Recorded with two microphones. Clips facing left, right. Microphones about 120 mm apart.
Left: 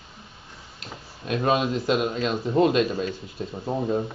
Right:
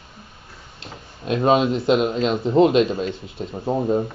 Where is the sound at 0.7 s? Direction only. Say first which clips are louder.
Right 2 dB; 25° right (ahead or behind).